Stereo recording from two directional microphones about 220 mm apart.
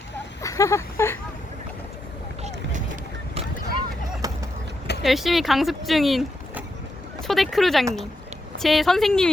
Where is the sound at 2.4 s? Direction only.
35° right (ahead or behind).